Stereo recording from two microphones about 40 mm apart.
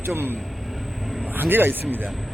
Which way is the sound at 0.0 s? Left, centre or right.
Right.